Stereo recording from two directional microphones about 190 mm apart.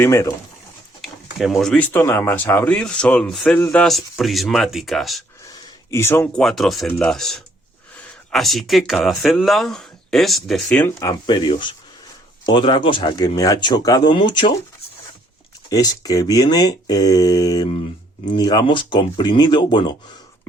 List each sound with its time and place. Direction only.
0.0 s speech: 15° left (ahead or behind)
1.0 s speech: centre (ahead or behind)
5.5 s a sound: 15° left (ahead or behind)
6.4 s speech: centre (ahead or behind)
11.0 s speech: 25° left (ahead or behind)
15.7 s speech: 20° left (ahead or behind)